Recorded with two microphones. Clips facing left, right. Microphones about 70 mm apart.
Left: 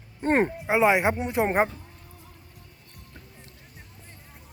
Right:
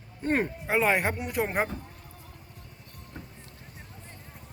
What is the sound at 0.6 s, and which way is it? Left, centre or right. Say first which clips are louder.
Speech: left 3 dB; centre.